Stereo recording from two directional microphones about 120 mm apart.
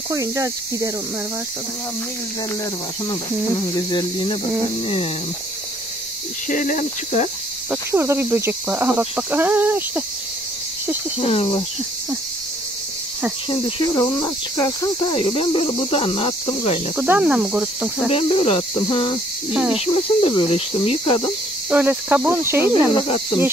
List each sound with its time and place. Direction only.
0.1 s speech: 30° right (ahead or behind)
3.1 s cricket: 35° left (ahead or behind)
4.8 s cricket: 55° left (ahead or behind)
6.5 s speech: 90° left; by 7.2 s 75° left (ahead or behind)
7.7 s speech: 20° right (ahead or behind)
11.1 s speech: 55° left (ahead or behind)
13.5 s cricket: 40° left (ahead or behind)
16.9 s speech: 10° right (ahead or behind)
18.1 s cricket: 55° left (ahead or behind)
19.5 s speech: 5° right (ahead or behind)
19.9 s cricket: 50° left (ahead or behind)
21.0 s cricket: 40° left (ahead or behind)
21.6 s speech: 15° right (ahead or behind)
22.9 s cricket: 45° left (ahead or behind)